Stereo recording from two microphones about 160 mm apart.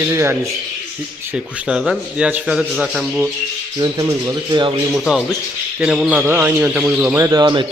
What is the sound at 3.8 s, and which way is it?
Speech, 25° right (ahead or behind).